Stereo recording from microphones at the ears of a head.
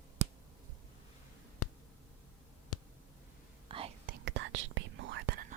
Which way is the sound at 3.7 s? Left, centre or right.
Right.